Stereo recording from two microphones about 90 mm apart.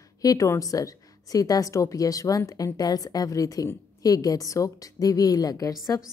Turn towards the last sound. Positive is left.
turn(degrees=40)  # may be behind; listen again after turning